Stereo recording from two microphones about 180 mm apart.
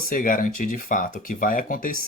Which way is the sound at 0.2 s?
50° left (ahead or behind).